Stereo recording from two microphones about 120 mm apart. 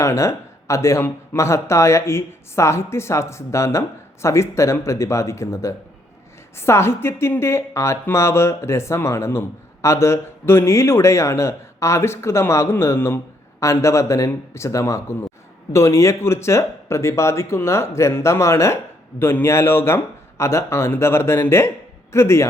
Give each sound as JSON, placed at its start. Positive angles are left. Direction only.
{"t": 0.0, "sound": "speech", "side_deg": 25}